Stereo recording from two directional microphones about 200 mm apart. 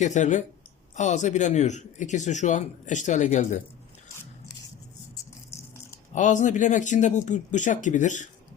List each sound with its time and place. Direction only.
0.0 s speech: 35° left (ahead or behind)
5.5 s rattle: 15° left (ahead or behind)
6.1 s speech: 40° left (ahead or behind)